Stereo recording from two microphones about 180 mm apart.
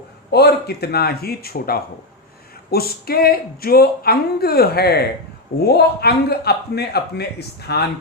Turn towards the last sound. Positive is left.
turn(degrees=65)  # may be behind; listen again after turning